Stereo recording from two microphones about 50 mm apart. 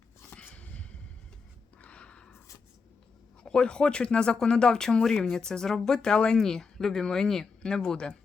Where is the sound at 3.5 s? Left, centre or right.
Centre.